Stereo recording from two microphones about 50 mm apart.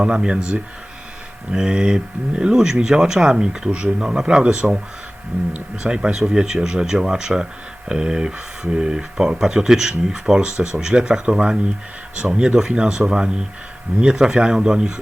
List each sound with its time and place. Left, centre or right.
0.0 s speech: centre